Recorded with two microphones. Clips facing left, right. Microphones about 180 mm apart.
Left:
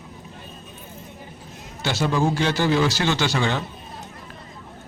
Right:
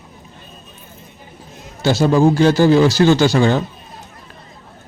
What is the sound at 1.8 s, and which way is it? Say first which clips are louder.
A man's voice: right 9 dB; 40° right (ahead or behind).